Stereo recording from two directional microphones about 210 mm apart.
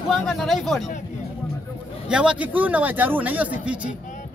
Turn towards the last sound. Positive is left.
turn(degrees=-5)  # may be behind; listen again after turning